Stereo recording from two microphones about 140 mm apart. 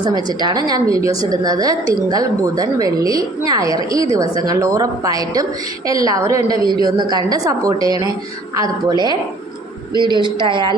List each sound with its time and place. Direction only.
0.0 s a woman's voice: 30° right (ahead or behind)